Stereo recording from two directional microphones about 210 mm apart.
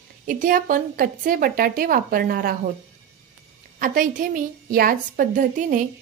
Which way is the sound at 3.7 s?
40° right (ahead or behind).